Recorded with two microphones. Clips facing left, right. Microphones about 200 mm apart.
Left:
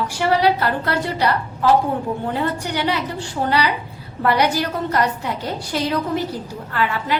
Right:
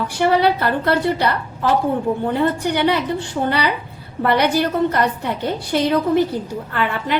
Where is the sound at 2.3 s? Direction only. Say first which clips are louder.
Right 4 dB; 55° right (ahead or behind).